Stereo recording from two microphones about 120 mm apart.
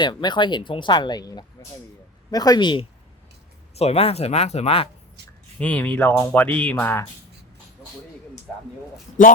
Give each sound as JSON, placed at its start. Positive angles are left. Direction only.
{"t": 0.0, "sound": "speech", "side_deg": 40}
{"t": 3.8, "sound": "speech", "side_deg": 55}
{"t": 5.5, "sound": "speech", "side_deg": 10}